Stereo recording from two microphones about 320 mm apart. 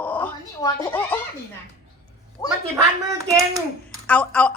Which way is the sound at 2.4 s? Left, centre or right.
Centre.